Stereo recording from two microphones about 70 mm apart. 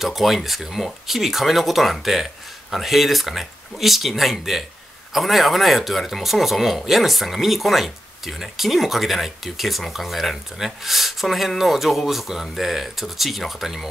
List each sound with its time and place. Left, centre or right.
0.0 s speech: centre